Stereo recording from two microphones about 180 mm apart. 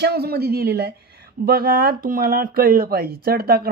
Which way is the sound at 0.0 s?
60° right (ahead or behind).